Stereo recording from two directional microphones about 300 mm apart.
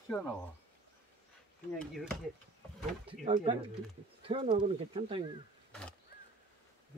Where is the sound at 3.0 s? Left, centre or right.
Centre.